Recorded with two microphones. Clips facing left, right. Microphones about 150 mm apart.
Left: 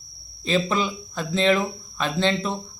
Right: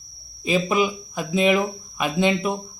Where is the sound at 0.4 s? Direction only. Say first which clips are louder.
Right 2 dB; 10° right (ahead or behind).